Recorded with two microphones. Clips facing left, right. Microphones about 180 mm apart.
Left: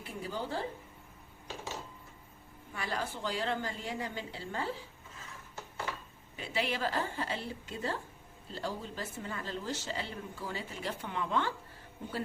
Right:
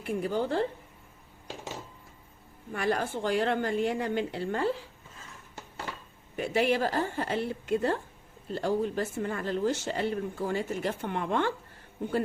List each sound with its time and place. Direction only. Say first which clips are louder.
0.0 s a woman's voice: right 9 dB; 60° right (ahead or behind)
2.7 s a woman's voice: right 8 dB; 55° right (ahead or behind)
6.3 s a woman's voice: right 9 dB; 55° right (ahead or behind)